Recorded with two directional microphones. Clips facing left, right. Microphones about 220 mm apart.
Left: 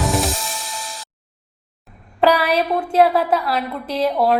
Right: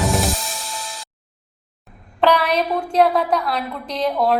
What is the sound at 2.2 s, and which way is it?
A woman's voice, 10° left (ahead or behind).